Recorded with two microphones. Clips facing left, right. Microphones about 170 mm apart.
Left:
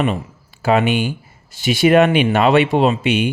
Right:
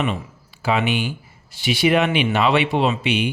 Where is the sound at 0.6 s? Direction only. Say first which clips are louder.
Left 5 dB; 45° left (ahead or behind).